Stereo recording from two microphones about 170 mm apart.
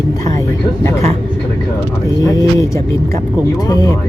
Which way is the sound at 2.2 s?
20° left (ahead or behind).